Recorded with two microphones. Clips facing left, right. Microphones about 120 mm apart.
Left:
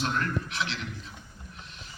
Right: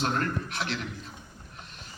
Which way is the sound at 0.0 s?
40° right (ahead or behind).